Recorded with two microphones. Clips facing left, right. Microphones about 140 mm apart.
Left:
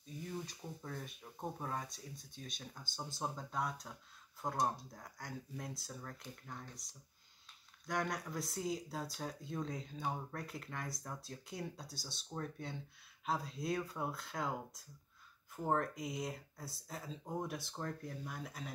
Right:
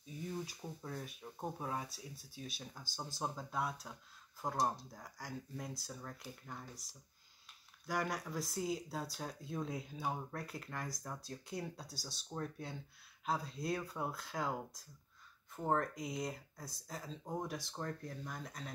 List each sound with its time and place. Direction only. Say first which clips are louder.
0.0 s speech: right 1 dB; 10° right (ahead or behind)